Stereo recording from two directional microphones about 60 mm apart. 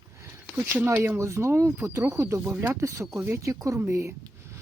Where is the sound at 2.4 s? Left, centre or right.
Right.